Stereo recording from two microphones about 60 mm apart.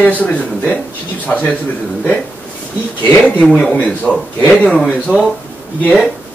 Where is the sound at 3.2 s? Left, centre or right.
Centre.